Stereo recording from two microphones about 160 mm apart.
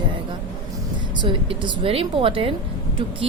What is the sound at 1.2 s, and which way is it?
A woman's voice, 30° right (ahead or behind).